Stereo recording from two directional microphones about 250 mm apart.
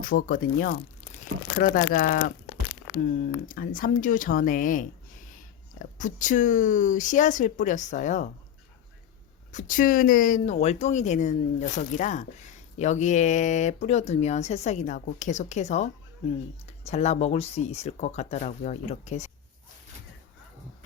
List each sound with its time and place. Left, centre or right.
0.0 s speech: left
3.5 s speech: left
9.5 s speech: left